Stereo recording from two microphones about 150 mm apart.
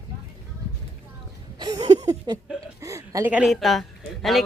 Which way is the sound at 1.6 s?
25° right (ahead or behind).